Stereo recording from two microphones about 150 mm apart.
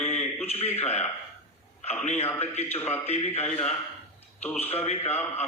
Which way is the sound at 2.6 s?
15° left (ahead or behind).